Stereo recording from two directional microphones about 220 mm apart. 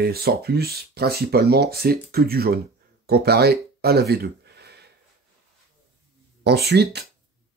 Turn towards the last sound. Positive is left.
turn(degrees=-45)  # may be behind; listen again after turning